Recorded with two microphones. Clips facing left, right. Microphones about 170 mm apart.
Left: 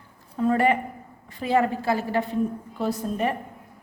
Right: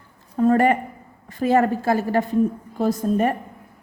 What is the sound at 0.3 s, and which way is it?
A woman's voice, 45° right (ahead or behind).